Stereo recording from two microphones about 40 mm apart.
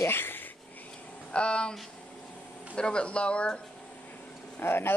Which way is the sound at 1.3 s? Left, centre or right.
Left.